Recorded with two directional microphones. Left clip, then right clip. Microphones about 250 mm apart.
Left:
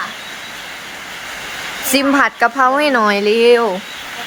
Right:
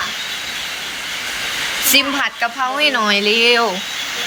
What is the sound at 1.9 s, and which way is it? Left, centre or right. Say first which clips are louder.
Speech: left 3 dB; centre.